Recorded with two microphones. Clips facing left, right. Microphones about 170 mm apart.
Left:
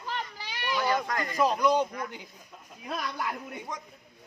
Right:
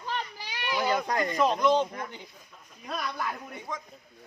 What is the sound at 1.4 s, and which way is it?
Speech, 5° left (ahead or behind).